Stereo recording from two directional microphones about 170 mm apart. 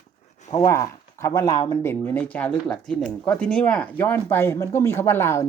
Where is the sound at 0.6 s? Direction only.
20° left (ahead or behind).